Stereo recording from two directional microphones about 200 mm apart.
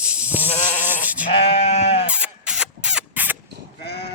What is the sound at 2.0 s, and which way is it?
Rodents, 5° right (ahead or behind).